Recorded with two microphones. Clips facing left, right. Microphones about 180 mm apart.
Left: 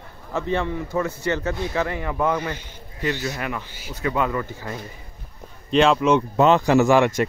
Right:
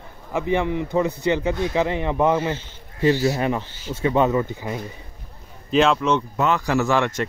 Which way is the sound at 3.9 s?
25° right (ahead or behind).